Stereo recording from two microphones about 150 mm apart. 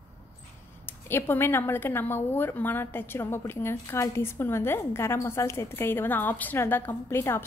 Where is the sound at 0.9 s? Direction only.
15° left (ahead or behind).